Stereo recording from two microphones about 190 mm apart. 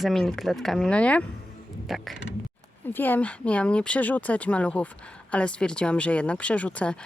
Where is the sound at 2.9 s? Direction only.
10° left (ahead or behind).